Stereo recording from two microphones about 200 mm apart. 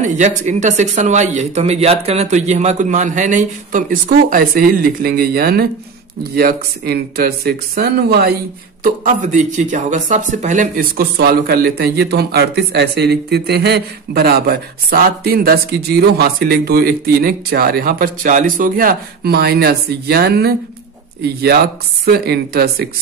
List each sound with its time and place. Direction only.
0.0 s speech: 35° right (ahead or behind)
9.0 s speech: 40° right (ahead or behind)